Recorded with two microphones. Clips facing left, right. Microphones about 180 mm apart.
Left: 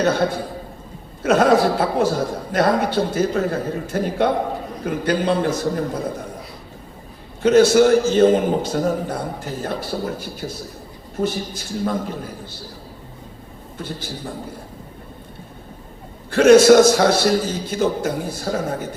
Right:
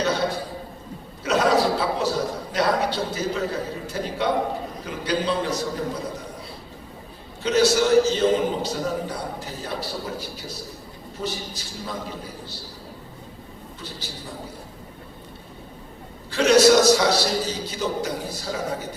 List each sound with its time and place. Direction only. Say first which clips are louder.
0.0 s a man's voice: left 5 dB; 50° left (ahead or behind)
7.4 s a man's voice: left 7 dB; 50° left (ahead or behind)
13.7 s a man's voice: left 9 dB; 50° left (ahead or behind)
16.3 s a man's voice: left 6 dB; 50° left (ahead or behind)